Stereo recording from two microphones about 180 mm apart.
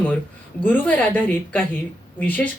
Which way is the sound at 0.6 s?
10° left (ahead or behind).